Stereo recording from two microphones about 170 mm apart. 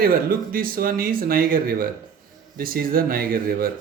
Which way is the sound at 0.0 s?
60° right (ahead or behind).